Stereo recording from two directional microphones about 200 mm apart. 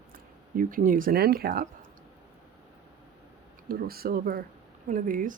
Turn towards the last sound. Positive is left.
turn(degrees=-40)  # may be behind; listen again after turning